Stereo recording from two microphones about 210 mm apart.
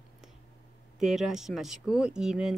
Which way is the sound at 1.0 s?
Centre (ahead or behind).